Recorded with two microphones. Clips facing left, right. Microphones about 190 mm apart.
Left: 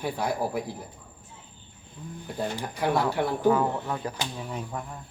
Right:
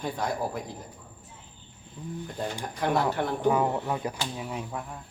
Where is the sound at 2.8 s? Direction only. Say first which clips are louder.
Left 1 dB; 10° left (ahead or behind).